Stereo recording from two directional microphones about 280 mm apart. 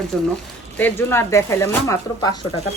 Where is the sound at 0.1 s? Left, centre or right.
Centre.